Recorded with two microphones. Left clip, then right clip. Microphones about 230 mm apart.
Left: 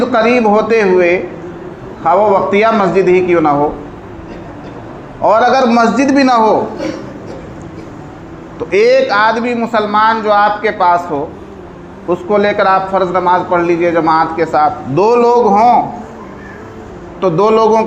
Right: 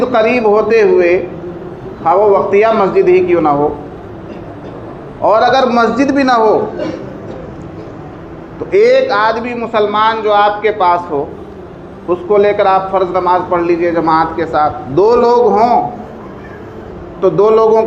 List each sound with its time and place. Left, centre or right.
0.1 s a man's voice: left
5.2 s a man's voice: left
8.7 s a man's voice: left
17.2 s a man's voice: left